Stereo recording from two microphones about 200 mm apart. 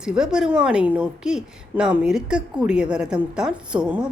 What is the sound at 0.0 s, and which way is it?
A woman's voice, 5° right (ahead or behind).